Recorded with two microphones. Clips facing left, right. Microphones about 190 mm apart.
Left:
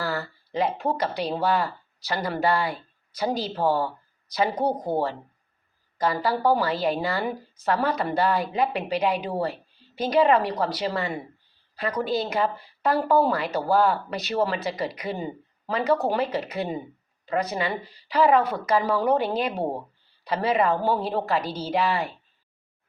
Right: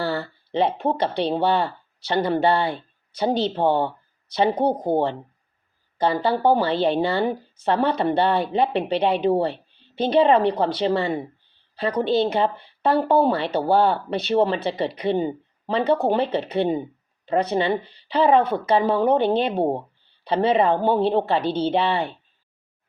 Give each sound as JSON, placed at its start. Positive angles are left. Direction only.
{"t": 0.0, "sound": "speech", "side_deg": -30}